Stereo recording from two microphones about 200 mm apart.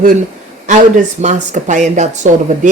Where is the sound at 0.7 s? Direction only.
35° right (ahead or behind).